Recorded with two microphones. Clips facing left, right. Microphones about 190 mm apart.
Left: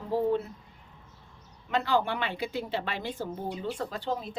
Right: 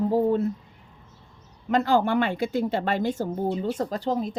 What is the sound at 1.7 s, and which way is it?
Speech, 45° right (ahead or behind).